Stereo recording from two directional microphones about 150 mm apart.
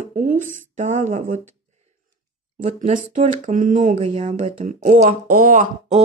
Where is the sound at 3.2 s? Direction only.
55° right (ahead or behind).